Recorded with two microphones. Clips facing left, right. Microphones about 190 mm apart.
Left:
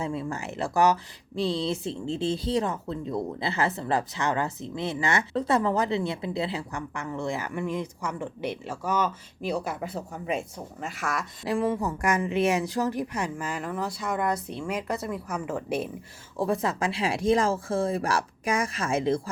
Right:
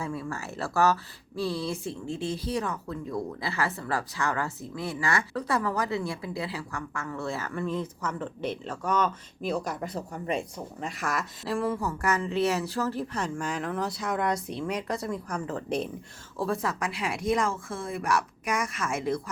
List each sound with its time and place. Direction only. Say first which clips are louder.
0.0 s speech: left 3 dB; 20° left (ahead or behind); by 11.3 s centre (ahead or behind)
11.4 s speech: left 3 dB; 20° left (ahead or behind)
16.4 s speech: left 3 dB; 20° left (ahead or behind)